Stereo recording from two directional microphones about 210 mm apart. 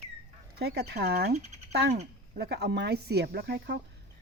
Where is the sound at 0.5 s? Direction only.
50° right (ahead or behind).